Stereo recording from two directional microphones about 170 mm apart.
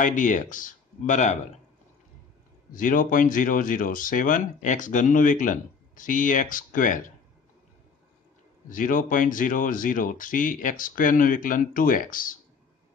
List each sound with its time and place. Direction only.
0.0 s speech: 50° left (ahead or behind)
2.7 s speech: 50° left (ahead or behind)
8.6 s speech: 50° left (ahead or behind)